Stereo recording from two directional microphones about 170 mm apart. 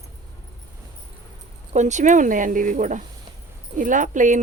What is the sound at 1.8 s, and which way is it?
Speech, 45° right (ahead or behind).